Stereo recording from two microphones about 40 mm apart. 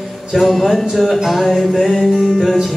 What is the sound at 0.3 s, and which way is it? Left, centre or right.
Music, centre.